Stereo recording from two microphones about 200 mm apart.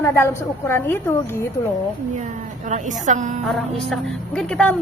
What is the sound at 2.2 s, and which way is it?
A woman's voice, 35° right (ahead or behind).